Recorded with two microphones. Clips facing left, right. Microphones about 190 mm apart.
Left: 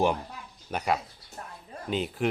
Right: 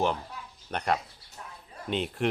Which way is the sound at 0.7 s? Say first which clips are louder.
Left 1 dB; 5° left (ahead or behind).